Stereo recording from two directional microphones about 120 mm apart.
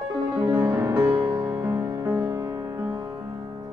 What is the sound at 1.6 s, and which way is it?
Music, 20° right (ahead or behind).